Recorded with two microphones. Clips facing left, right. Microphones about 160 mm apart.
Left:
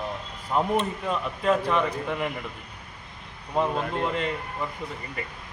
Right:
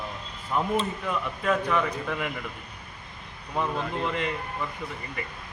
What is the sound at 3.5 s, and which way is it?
Speech, 30° left (ahead or behind).